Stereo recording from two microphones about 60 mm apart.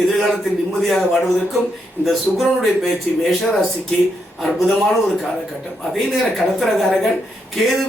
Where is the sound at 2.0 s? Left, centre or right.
Centre.